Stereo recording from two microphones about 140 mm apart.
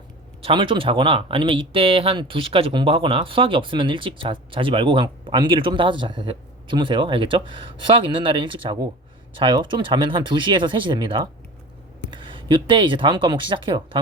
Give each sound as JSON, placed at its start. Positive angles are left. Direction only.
{"t": 0.4, "sound": "speech", "side_deg": -35}